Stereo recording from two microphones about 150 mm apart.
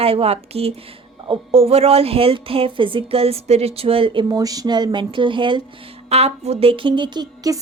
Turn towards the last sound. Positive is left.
turn(degrees=-25)  # may be behind; listen again after turning